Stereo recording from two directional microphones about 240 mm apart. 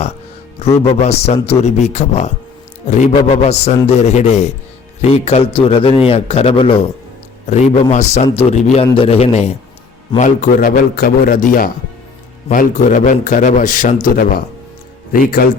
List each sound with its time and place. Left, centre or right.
0.9 s a man's voice: left